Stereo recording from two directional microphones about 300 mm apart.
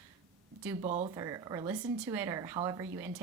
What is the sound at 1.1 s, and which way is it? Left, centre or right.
A woman's voice, centre.